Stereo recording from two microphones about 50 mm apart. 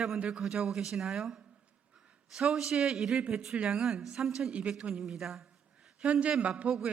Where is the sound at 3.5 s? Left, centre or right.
Centre.